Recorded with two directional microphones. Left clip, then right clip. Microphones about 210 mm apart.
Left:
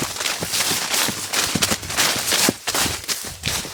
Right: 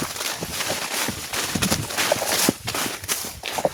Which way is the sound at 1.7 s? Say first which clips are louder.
Left 2 dB; 15° left (ahead or behind).